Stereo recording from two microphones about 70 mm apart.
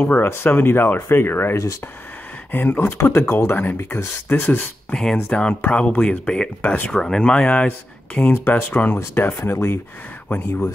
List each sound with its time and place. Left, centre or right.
0.1 s speech: left
3.2 s speech: left
4.5 s speech: centre
5.1 s speech: centre
6.9 s speech: centre
8.3 s speech: left